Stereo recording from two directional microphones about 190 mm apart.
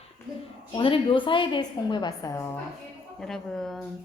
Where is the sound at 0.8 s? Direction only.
30° left (ahead or behind).